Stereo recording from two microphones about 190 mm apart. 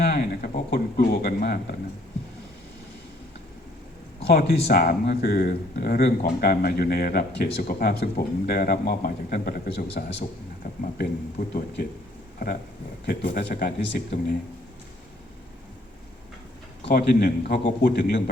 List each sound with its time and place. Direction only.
0.0 s speech: 55° left (ahead or behind)
4.3 s speech: 55° left (ahead or behind)
13.1 s speech: 55° left (ahead or behind)
16.8 s speech: 50° left (ahead or behind)